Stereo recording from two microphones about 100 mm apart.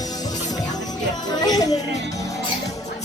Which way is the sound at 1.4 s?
40° left (ahead or behind).